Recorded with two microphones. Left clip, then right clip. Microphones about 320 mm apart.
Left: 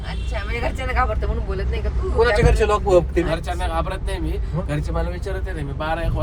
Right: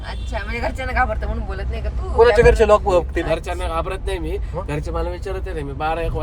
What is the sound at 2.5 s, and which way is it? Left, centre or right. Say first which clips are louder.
Speech: right 4 dB; right.